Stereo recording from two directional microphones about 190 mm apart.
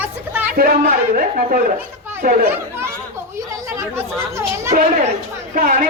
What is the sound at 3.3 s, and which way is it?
Speech, 15° right (ahead or behind).